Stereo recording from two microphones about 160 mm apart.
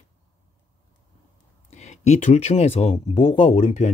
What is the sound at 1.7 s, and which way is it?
Speech, 45° left (ahead or behind).